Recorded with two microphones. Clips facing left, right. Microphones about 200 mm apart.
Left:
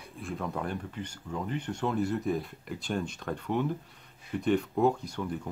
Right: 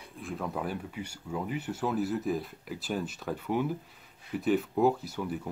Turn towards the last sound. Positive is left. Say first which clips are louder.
# right 1 dB
turn(degrees=-5)  # may be behind; listen again after turning